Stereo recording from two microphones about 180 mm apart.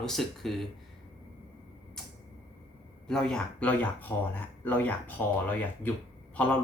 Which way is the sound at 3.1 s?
5° left (ahead or behind).